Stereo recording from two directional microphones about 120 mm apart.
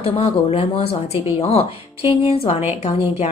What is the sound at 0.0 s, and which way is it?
Speech, 55° left (ahead or behind).